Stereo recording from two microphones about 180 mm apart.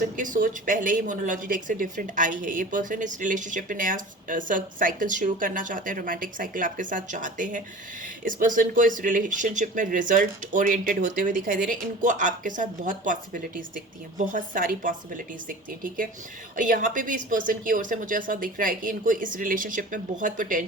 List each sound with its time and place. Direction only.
0.0 s a woman's voice: 50° right (ahead or behind)